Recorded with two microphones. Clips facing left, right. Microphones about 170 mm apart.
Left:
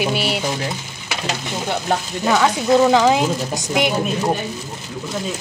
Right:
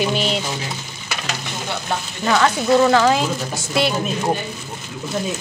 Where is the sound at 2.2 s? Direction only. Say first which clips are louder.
Even; 10° left (ahead or behind).